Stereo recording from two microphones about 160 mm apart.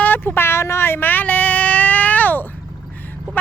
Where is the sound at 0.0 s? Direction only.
10° left (ahead or behind).